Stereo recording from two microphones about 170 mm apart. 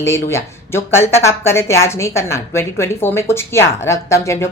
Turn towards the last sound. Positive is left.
turn(degrees=15)  # may be behind; listen again after turning